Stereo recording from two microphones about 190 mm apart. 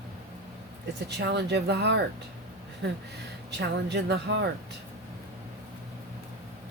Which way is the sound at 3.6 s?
60° right (ahead or behind).